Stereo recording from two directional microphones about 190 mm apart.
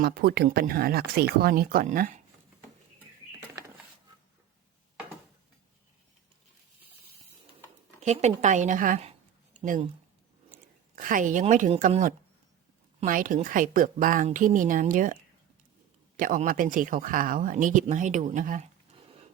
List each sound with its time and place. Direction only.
0.0 s speech: 55° right (ahead or behind)
8.0 s a woman's voice: 35° right (ahead or behind)
10.9 s a woman's voice: 45° right (ahead or behind); by 19.2 s 30° right (ahead or behind)